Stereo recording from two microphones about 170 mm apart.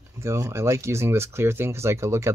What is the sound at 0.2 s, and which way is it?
Speech, 15° right (ahead or behind).